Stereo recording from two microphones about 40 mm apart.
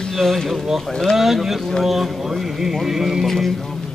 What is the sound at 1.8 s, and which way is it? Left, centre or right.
Music, centre.